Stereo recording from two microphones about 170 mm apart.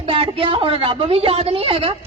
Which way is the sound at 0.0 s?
35° right (ahead or behind).